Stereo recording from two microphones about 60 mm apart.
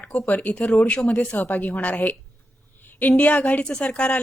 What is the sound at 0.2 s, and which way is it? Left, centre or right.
A woman's voice, left.